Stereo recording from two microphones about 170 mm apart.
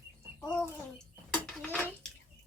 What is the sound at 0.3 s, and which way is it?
Bird, 15° left (ahead or behind).